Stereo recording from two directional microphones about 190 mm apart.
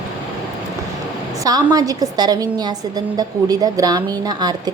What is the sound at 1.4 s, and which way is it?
A woman's voice, 20° right (ahead or behind).